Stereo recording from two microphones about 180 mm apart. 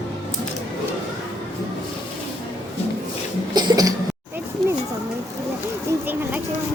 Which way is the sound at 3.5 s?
20° right (ahead or behind).